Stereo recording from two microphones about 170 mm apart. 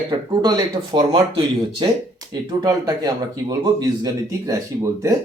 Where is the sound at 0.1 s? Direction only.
25° right (ahead or behind).